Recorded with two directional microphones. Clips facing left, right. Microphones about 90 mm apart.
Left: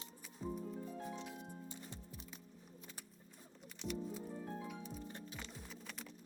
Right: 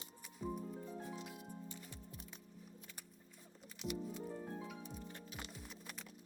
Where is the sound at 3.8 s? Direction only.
5° right (ahead or behind).